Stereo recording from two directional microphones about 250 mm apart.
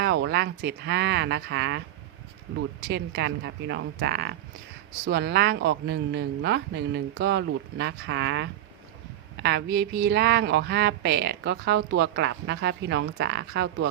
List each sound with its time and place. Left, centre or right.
0.0 s speech: right
2.8 s a woman's voice: right